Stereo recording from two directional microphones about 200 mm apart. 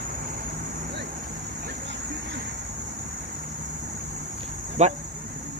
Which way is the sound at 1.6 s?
55° right (ahead or behind).